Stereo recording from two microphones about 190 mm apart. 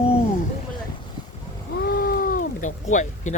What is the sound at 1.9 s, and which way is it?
Cat, 50° left (ahead or behind).